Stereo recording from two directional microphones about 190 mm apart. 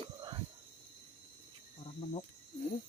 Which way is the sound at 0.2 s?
25° right (ahead or behind).